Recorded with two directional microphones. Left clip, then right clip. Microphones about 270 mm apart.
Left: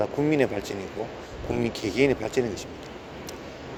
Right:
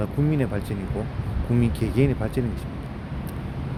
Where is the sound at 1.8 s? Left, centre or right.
Left.